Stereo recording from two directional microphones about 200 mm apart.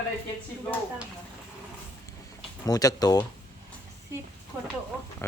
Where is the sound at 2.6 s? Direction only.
20° left (ahead or behind).